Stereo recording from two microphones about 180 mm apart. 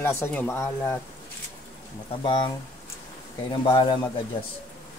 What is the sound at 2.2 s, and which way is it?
Speech, 25° left (ahead or behind).